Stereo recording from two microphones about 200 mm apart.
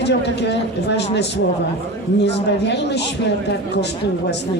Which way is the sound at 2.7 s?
60° left (ahead or behind).